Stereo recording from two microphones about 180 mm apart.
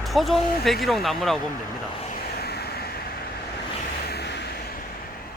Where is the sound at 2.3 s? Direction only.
60° left (ahead or behind).